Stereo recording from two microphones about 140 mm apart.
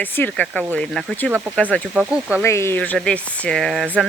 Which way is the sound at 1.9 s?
5° right (ahead or behind).